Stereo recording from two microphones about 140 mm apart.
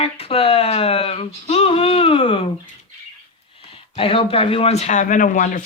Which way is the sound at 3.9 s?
40° left (ahead or behind).